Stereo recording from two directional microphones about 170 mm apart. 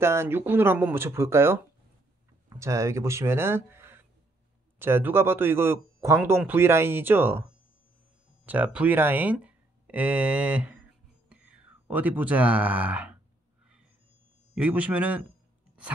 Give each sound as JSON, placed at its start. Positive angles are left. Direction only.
{"t": 0.0, "sound": "speech", "side_deg": -15}
{"t": 8.5, "sound": "speech", "side_deg": -10}
{"t": 11.2, "sound": "a sound", "side_deg": -10}
{"t": 14.5, "sound": "speech", "side_deg": -10}